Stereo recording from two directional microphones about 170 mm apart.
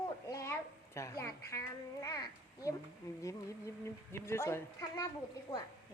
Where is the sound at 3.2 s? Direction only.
15° left (ahead or behind).